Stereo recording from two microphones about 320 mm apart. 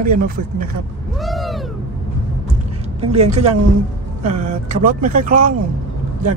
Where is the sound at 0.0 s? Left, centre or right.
Right.